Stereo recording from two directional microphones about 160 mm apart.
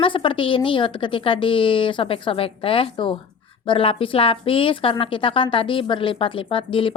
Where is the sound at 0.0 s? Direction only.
30° left (ahead or behind).